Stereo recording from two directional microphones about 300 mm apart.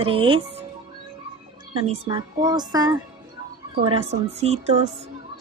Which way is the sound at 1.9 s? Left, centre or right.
Centre.